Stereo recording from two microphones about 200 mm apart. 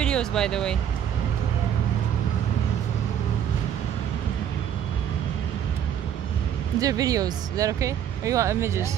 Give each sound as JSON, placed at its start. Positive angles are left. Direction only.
{"t": 0.0, "sound": "speech", "side_deg": 5}
{"t": 6.8, "sound": "speech", "side_deg": -15}